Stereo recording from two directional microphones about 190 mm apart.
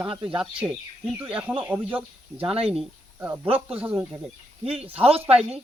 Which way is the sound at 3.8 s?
10° right (ahead or behind).